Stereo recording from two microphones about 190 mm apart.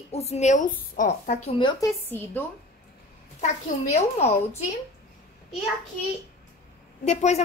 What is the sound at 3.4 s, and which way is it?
Speech, 35° left (ahead or behind).